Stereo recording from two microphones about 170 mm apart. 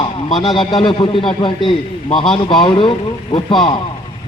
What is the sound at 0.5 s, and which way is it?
A man's voice, 30° left (ahead or behind).